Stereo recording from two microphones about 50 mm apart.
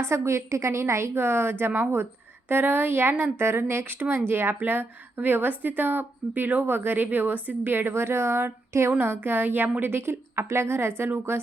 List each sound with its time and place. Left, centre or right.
0.0 s a woman's voice: right
9.0 s a woman's voice: right